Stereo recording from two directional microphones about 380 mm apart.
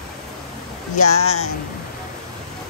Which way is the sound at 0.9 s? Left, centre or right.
Left.